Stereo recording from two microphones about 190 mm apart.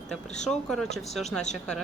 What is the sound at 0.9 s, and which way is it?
Speech, centre (ahead or behind).